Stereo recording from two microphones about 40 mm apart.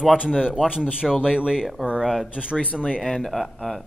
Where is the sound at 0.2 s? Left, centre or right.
Centre.